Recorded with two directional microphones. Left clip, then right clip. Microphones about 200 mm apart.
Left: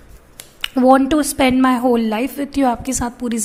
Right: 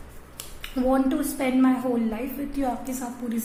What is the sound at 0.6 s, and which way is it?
A woman's voice, 45° left (ahead or behind).